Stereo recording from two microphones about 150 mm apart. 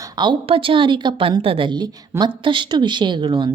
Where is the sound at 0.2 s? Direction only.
35° right (ahead or behind).